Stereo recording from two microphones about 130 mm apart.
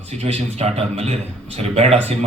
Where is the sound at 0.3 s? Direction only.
55° right (ahead or behind).